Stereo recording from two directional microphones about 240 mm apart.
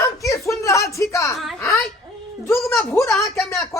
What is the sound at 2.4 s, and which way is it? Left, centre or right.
Speech, centre.